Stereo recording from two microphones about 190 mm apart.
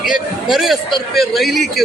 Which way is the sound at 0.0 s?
Centre (ahead or behind).